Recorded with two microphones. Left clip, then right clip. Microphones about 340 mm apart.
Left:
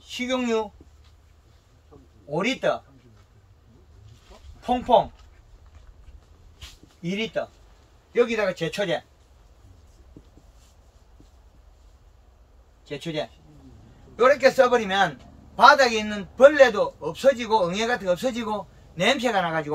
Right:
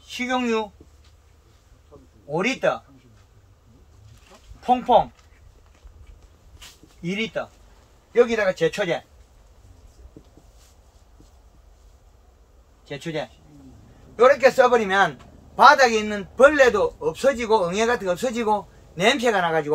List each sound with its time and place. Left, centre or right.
0.3 s a man's voice: centre
2.3 s a man's voice: centre
4.6 s speech: centre
8.1 s a man's voice: centre
12.8 s a man's voice: centre